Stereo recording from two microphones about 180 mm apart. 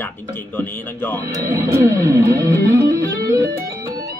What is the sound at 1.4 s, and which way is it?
Music, 15° right (ahead or behind).